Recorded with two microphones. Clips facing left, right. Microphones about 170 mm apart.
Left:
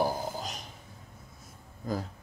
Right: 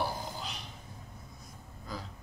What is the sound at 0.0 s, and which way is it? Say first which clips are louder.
Burping: left 6 dB; 45° left (ahead or behind).